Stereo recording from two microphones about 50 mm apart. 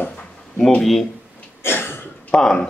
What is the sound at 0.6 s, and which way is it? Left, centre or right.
Speech, centre.